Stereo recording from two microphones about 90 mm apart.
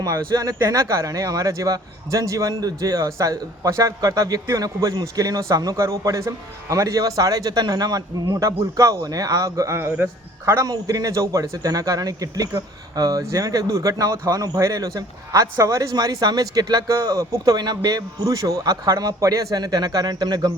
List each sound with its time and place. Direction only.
0.0 s speech: 40° right (ahead or behind)
10.7 s speech: 40° right (ahead or behind)